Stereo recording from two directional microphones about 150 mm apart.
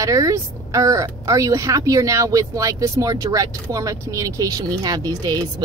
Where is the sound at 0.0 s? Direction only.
20° right (ahead or behind).